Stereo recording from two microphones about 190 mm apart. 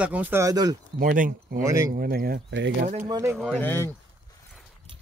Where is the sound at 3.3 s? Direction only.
5° left (ahead or behind).